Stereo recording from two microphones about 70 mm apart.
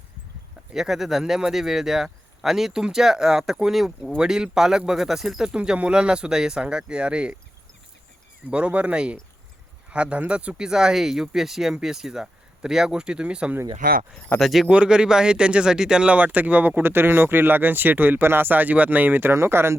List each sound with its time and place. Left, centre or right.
0.7 s speech: centre
5.5 s speech: centre
8.4 s speech: centre
14.3 s speech: centre
14.7 s speech: centre
19.3 s speech: right